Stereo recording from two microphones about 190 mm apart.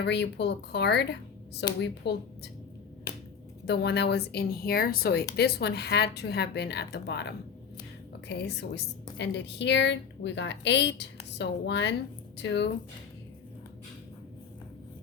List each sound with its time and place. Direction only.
0.0 s speech: 65° left (ahead or behind)
3.7 s a woman's voice: 60° left (ahead or behind)